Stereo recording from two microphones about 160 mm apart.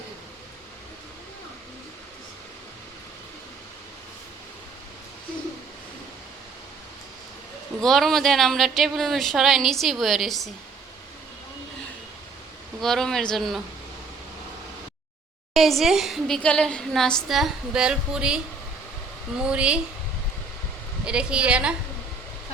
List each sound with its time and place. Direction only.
7.8 s a woman's voice: centre (ahead or behind)
12.8 s a woman's voice: centre (ahead or behind)
15.5 s a woman's voice: centre (ahead or behind)
19.4 s a woman's voice: 5° right (ahead or behind)
21.0 s a woman's voice: 5° right (ahead or behind)